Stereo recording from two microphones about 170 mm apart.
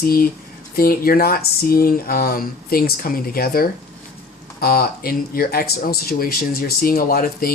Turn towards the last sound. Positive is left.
turn(degrees=60)  # may be behind; listen again after turning